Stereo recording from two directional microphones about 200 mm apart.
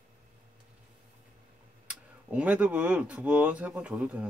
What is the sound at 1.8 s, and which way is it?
Speech, 5° right (ahead or behind).